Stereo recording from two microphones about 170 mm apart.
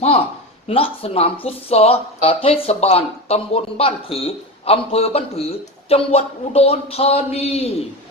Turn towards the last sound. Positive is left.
turn(degrees=35)  # may be behind; listen again after turning